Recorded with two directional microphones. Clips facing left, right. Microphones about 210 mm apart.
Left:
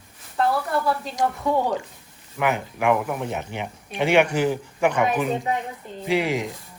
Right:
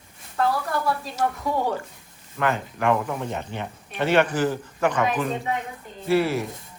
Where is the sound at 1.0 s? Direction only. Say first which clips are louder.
Left 1 dB; 15° left (ahead or behind).